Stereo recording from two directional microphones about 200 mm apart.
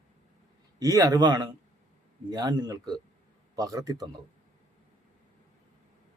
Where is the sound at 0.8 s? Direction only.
20° right (ahead or behind).